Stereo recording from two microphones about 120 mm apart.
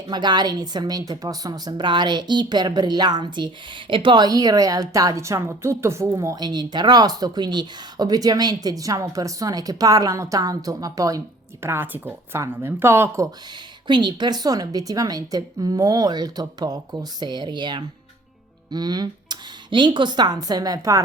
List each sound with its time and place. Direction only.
0.1 s a woman's voice: 35° right (ahead or behind)
11.6 s a woman's voice: 20° right (ahead or behind)
13.8 s a woman's voice: 40° right (ahead or behind)